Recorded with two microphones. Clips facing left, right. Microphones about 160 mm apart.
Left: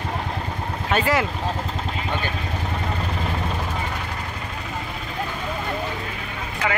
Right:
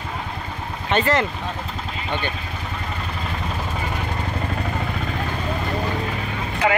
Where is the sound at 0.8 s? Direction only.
5° left (ahead or behind).